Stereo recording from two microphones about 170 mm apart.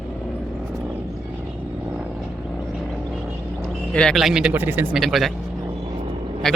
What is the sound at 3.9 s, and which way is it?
A man's voice, centre (ahead or behind).